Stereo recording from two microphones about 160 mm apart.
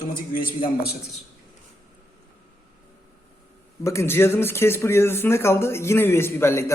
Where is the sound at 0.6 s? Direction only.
80° left.